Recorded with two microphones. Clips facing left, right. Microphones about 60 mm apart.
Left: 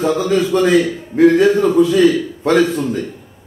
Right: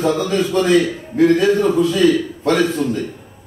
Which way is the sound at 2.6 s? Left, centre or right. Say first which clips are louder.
Left 2 dB; centre.